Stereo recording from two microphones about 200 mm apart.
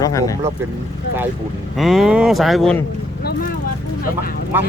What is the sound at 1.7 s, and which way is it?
Speech, centre (ahead or behind).